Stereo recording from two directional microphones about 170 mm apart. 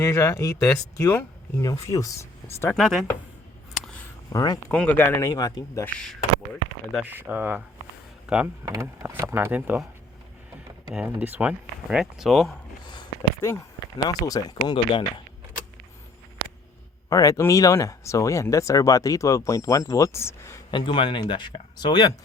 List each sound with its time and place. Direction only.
0.0 s speech: 15° left (ahead or behind)
2.7 s speech: centre (ahead or behind)
3.8 s a sound: 5° left (ahead or behind)
4.3 s speech: 20° left (ahead or behind)
4.7 s speech: 10° left (ahead or behind)
6.9 s speech: 10° right (ahead or behind)
8.7 s speech: 15° right (ahead or behind)
11.2 s speech: 10° right (ahead or behind)
12.8 s speech: 25° left (ahead or behind)
17.1 s speech: 20° left (ahead or behind)
20.7 s speech: 30° left (ahead or behind)